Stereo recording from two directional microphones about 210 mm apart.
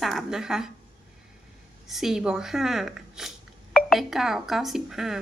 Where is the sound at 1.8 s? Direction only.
Centre (ahead or behind).